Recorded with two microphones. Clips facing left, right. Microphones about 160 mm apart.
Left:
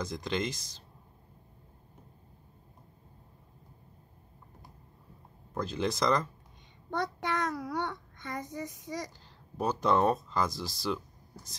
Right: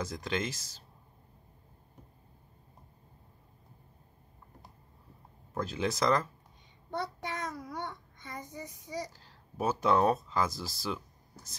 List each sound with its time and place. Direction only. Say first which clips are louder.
0.0 s speech: left 1 dB; 5° right (ahead or behind)
5.5 s speech: left 1 dB; 5° right (ahead or behind)
6.9 s a child's voice: left 4 dB; 75° left (ahead or behind)
9.6 s speech: even; 5° right (ahead or behind)